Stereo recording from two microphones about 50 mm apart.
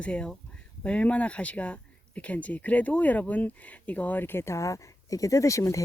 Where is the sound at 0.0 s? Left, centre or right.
Left.